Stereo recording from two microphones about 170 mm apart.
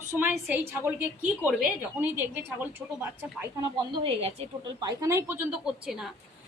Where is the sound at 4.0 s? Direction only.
35° right (ahead or behind).